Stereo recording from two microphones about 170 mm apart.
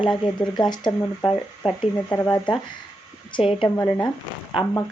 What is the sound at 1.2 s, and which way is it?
Speech, 30° left (ahead or behind).